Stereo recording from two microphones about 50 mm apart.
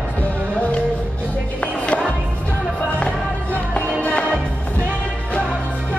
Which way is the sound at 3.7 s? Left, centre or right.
Left.